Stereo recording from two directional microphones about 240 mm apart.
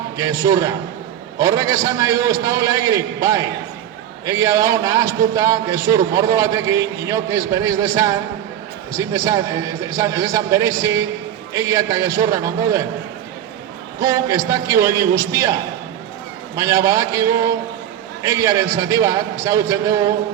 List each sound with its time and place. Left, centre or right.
0.2 s a man's voice: centre
14.0 s a man's voice: centre